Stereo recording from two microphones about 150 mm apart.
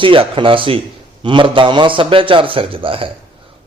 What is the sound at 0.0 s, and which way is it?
A man's voice, 35° right (ahead or behind).